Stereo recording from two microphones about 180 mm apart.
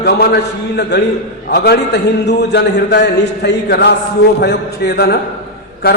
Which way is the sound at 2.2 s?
70° left (ahead or behind).